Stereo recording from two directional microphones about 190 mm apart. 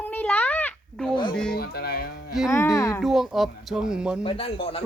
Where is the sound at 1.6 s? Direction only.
55° left (ahead or behind).